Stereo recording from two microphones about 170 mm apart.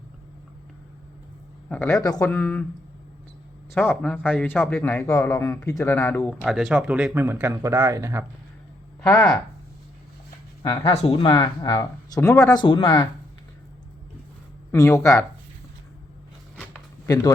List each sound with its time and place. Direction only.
1.7 s speech: 10° left (ahead or behind)
2.0 s speech: 20° left (ahead or behind)
3.8 s speech: 10° left (ahead or behind)
6.4 s speech: centre (ahead or behind); by 8.2 s 15° right (ahead or behind)
9.0 s speech: 5° left (ahead or behind)
10.6 s speech: 25° left (ahead or behind)
14.7 s speech: 15° left (ahead or behind)